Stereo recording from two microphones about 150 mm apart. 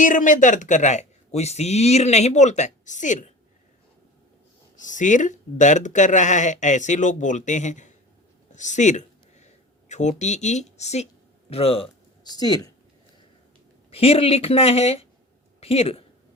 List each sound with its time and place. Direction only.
0.0 s a man's voice: 60° left (ahead or behind)
4.8 s speech: 55° left (ahead or behind)
8.5 s a sound: 55° left (ahead or behind)
9.9 s speech: 50° left (ahead or behind); by 12.7 s 25° left (ahead or behind)
13.9 s speech: 40° left (ahead or behind)